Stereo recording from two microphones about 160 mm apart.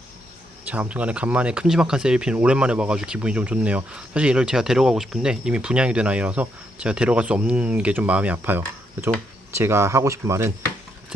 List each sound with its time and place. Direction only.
0.7 s speech: 10° right (ahead or behind)